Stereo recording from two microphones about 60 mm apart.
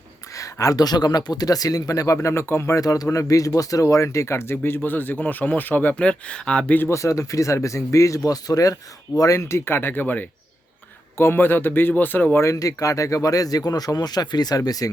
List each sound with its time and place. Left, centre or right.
0.6 s speech: left
2.1 s speech: left
2.8 s speech: left
6.0 s speech: centre
6.9 s speech: left
12.5 s speech: left